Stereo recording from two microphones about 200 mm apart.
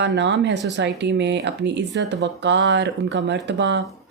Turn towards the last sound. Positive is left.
turn(degrees=-65)  # may be behind; listen again after turning